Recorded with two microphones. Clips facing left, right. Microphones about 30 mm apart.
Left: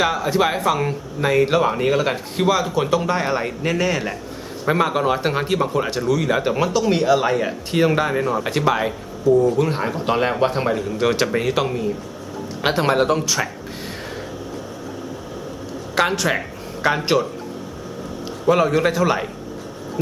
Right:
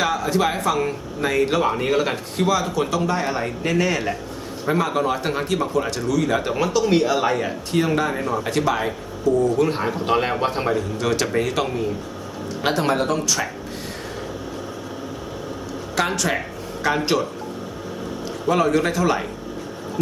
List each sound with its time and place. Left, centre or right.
0.0 s speech: centre
4.6 s speech: centre
7.7 s speech: centre
10.9 s speech: centre
12.6 s speech: centre
16.0 s speech: centre
18.4 s speech: centre